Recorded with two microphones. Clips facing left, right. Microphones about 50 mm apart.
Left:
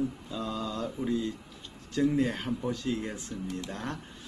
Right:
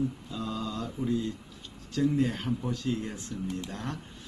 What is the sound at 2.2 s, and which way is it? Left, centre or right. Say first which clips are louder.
Speech: even; centre.